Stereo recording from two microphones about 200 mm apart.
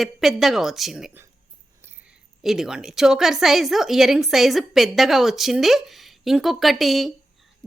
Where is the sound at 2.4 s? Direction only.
Centre (ahead or behind).